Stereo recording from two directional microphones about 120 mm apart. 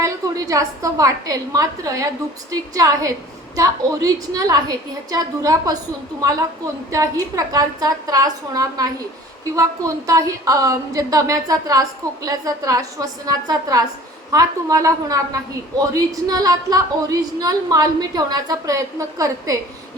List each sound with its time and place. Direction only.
0.0 s a woman's voice: 30° right (ahead or behind)
6.9 s a woman's voice: 25° right (ahead or behind)